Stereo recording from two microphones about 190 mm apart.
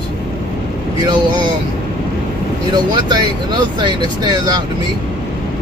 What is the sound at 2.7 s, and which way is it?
Speech, 25° right (ahead or behind).